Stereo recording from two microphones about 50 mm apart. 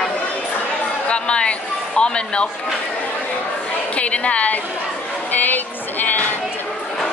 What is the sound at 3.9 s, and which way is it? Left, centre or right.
Speech, left.